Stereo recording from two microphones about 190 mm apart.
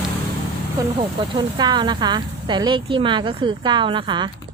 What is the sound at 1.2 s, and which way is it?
Speech, 25° right (ahead or behind).